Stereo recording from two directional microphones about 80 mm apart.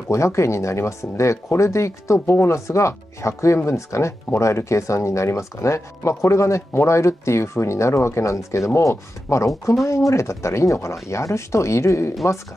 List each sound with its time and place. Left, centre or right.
0.1 s speech: left